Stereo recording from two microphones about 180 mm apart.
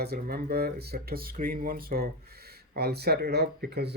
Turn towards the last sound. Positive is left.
turn(degrees=-65)  # may be behind; listen again after turning